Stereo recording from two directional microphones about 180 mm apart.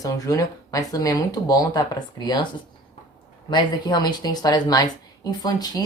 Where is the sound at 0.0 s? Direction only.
20° left (ahead or behind).